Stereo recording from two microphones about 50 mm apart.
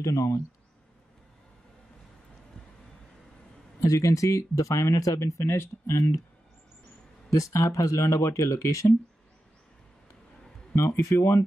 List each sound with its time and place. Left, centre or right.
0.0 s speech: left
3.8 s speech: left
7.2 s speech: left
10.8 s speech: left
11.1 s speech: left